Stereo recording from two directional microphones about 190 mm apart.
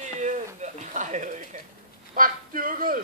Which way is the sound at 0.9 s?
40° right (ahead or behind).